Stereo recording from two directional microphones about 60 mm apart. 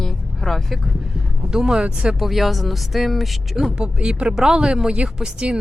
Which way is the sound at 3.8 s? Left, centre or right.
Centre.